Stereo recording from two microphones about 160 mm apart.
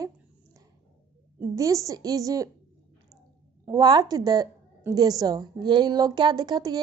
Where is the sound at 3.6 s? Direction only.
25° right (ahead or behind).